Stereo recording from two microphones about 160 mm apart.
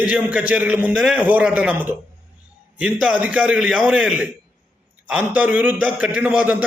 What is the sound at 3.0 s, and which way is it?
A man's voice, 10° right (ahead or behind).